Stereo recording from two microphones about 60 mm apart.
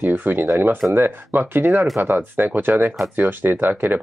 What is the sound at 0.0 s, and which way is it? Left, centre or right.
Speech, right.